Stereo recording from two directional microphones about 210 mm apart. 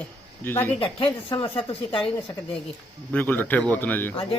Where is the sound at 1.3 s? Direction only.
25° left (ahead or behind).